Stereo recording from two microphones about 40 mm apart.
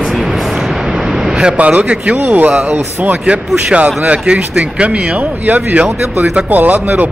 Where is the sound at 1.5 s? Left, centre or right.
Right.